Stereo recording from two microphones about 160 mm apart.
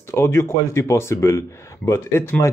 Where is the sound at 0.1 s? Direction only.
15° left (ahead or behind).